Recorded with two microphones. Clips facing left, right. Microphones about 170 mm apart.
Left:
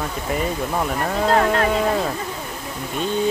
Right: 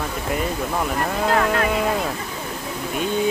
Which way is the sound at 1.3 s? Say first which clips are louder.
Left 2 dB; 35° left (ahead or behind).